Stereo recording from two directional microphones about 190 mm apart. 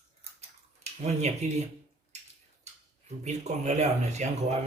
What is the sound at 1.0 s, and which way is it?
Speech, 35° right (ahead or behind).